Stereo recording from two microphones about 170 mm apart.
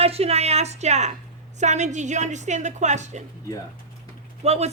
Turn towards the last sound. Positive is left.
turn(degrees=-40)  # may be behind; listen again after turning